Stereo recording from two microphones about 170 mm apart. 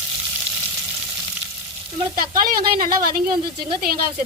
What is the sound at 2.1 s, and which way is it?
A woman's voice, 60° right (ahead or behind).